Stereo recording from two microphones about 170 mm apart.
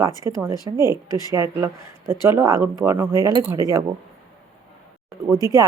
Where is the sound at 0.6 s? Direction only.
15° right (ahead or behind).